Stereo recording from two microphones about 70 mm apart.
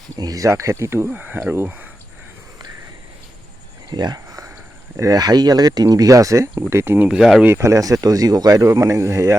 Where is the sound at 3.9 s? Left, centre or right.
Right.